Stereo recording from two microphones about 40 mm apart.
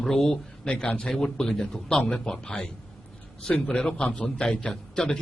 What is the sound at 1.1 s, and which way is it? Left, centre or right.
Speech, centre.